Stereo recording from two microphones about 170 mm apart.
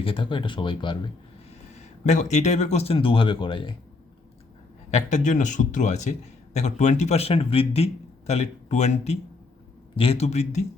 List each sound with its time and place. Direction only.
0.0 s speech: 30° left (ahead or behind)
1.7 s speech: 45° left (ahead or behind)
4.9 s a man's voice: 45° left (ahead or behind)